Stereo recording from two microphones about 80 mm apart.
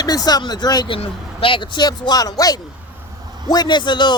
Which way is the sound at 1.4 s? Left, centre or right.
Left.